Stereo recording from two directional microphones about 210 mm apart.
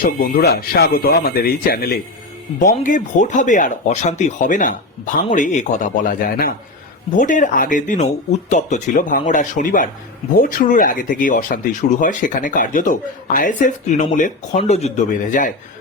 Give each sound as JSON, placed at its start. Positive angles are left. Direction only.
{"t": 0.0, "sound": "speech", "side_deg": 45}